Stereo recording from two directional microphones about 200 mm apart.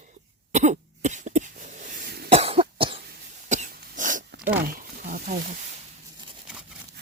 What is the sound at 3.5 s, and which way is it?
Cough, 40° right (ahead or behind).